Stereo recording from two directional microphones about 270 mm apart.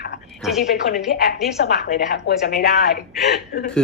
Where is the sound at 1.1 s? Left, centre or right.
Left.